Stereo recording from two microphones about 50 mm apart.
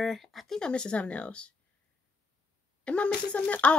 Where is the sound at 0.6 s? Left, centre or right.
Centre.